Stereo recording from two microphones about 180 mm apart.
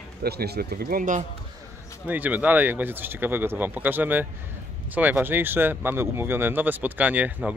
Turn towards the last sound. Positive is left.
turn(degrees=-10)  # may be behind; listen again after turning